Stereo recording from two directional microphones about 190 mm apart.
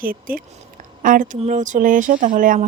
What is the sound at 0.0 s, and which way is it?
Speech, 50° right (ahead or behind).